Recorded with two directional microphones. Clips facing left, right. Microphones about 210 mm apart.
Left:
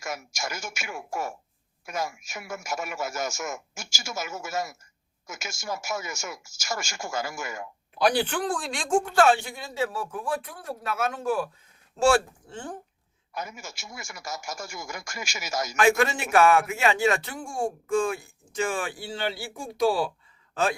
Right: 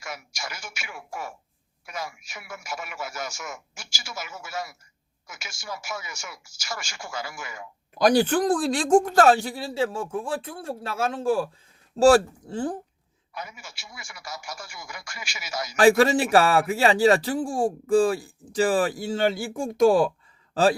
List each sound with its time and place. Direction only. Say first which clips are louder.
0.0 s a man's voice: left 3 dB; 45° left (ahead or behind)
7.9 s speech: right 5 dB; 40° right (ahead or behind)
13.3 s a man's voice: left 3 dB; 45° left (ahead or behind)
15.7 s speech: right 5 dB; 35° right (ahead or behind)
20.5 s speech: right 6 dB; 35° right (ahead or behind)